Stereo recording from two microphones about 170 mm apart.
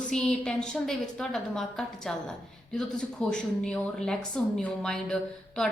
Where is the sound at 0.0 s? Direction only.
5° left (ahead or behind).